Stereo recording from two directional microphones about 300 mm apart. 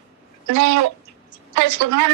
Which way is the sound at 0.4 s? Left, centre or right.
Right.